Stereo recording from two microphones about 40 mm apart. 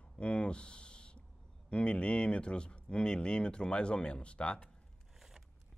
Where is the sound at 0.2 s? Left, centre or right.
Left.